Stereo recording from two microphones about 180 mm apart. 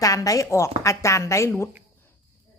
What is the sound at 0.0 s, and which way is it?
A woman's voice, 20° left (ahead or behind).